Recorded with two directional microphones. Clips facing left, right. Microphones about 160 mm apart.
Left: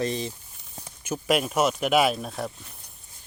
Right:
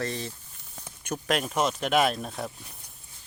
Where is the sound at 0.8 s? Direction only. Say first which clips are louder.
Left 3 dB; 5° left (ahead or behind).